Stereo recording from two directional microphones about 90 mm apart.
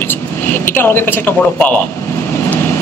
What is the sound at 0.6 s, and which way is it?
A man's voice, 25° left (ahead or behind).